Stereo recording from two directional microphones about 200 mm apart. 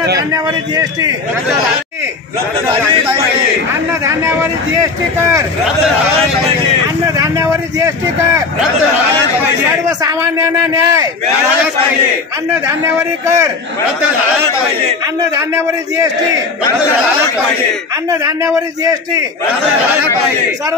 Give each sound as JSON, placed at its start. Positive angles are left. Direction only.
{"t": 0.3, "sound": "a man's voice", "side_deg": -20}
{"t": 4.0, "sound": "a man's voice", "side_deg": -15}
{"t": 7.2, "sound": "a man's voice", "side_deg": -15}
{"t": 9.4, "sound": "a man's voice", "side_deg": -15}
{"t": 15.3, "sound": "a man's voice", "side_deg": -15}
{"t": 18.2, "sound": "a man's voice", "side_deg": -15}